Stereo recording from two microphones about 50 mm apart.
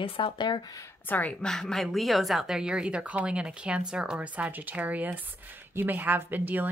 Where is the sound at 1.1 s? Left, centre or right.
Left.